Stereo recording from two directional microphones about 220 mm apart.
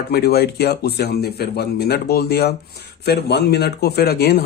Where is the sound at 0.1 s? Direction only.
45° left (ahead or behind).